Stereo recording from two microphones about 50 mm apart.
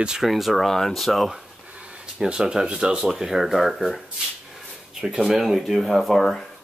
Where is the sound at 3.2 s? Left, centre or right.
Centre.